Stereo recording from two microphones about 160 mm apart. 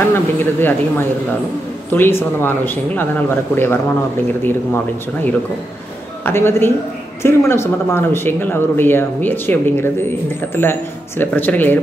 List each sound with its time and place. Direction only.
0.1 s speech: 15° left (ahead or behind)
6.2 s speech: 15° left (ahead or behind)